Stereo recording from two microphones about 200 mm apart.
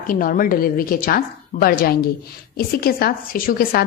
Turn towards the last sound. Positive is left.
turn(degrees=45)  # may be behind; listen again after turning